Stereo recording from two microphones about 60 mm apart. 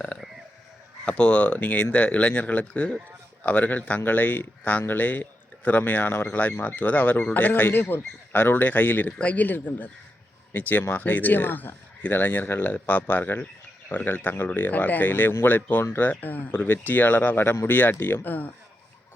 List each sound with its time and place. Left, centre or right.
1.0 s speech: centre; by 17.7 s left
17.7 s speech: left